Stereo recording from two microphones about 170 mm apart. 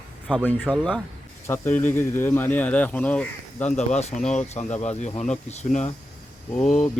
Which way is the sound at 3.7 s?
40° left (ahead or behind).